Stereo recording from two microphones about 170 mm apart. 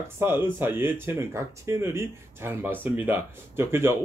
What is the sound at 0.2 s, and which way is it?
Speech, 15° right (ahead or behind).